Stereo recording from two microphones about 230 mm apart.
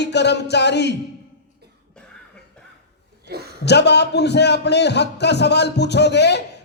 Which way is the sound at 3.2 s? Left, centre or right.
Right.